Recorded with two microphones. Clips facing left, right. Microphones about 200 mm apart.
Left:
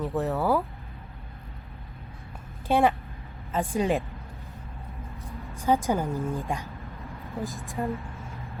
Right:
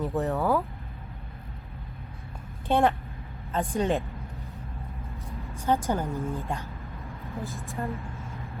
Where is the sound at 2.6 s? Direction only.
5° left (ahead or behind).